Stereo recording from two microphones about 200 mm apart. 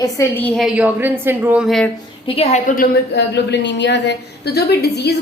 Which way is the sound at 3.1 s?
60° left (ahead or behind).